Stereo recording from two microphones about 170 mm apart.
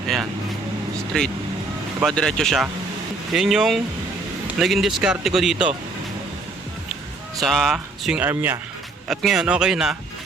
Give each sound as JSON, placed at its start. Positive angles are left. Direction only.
{"t": 1.1, "sound": "speech", "side_deg": 5}
{"t": 7.3, "sound": "speech", "side_deg": 0}